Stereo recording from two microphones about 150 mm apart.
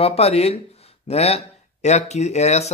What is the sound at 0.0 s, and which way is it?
Speech, 40° left (ahead or behind).